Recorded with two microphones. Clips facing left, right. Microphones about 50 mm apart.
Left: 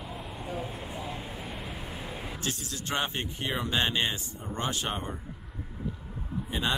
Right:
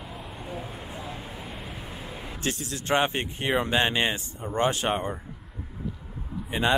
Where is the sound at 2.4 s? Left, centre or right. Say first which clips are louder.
Right 7 dB; right.